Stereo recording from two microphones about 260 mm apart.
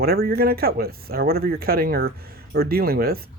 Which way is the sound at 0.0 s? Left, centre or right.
Right.